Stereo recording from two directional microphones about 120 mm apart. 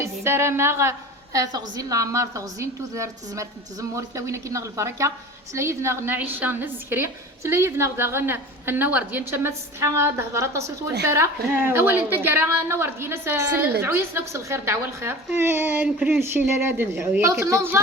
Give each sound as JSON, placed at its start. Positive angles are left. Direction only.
{"t": 0.0, "sound": "a woman's voice", "side_deg": -20}